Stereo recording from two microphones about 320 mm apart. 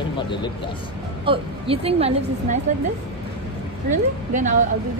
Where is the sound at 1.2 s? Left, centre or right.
Centre.